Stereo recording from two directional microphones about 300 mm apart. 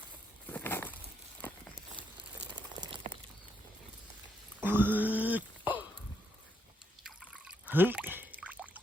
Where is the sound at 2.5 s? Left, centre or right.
Centre.